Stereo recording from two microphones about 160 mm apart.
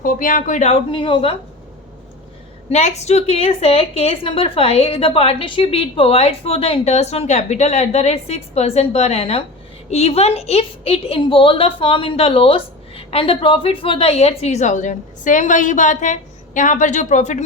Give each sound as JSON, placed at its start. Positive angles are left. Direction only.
{"t": 0.0, "sound": "a woman's voice", "side_deg": 60}
{"t": 0.9, "sound": "a woman's voice", "side_deg": 30}
{"t": 2.6, "sound": "a woman's voice", "side_deg": 45}